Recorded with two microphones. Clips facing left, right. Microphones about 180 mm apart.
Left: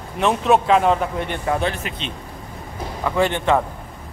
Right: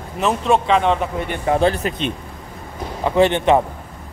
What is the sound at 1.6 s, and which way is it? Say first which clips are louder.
Speech: right 7 dB; 40° right (ahead or behind).